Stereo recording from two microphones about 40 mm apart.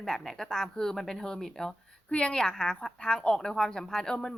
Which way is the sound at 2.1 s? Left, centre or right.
Left.